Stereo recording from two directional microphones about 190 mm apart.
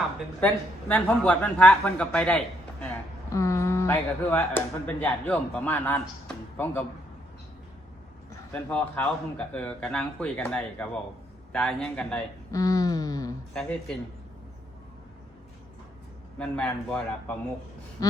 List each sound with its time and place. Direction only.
0.3 s speech: 10° left (ahead or behind)
8.5 s a man's voice: 5° left (ahead or behind)
12.5 s a sound: 20° left (ahead or behind)
13.5 s a man's voice: 5° left (ahead or behind)
16.4 s a man's voice: 5° left (ahead or behind)